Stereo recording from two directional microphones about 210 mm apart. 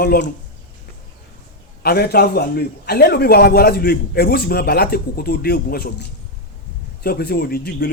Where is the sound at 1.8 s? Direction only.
45° left (ahead or behind).